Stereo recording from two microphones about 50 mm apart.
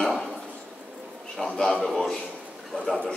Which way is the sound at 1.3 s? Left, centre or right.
Centre.